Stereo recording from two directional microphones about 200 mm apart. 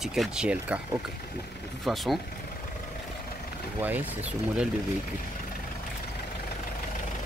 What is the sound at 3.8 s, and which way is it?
Speech, 10° right (ahead or behind).